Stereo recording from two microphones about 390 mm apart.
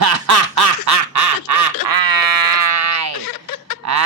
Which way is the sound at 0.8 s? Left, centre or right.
Right.